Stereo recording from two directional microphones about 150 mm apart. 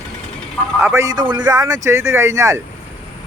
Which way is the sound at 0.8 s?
15° right (ahead or behind).